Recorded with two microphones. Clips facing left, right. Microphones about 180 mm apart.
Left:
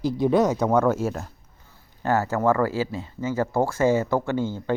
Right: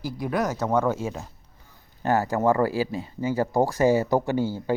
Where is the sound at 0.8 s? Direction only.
15° right (ahead or behind).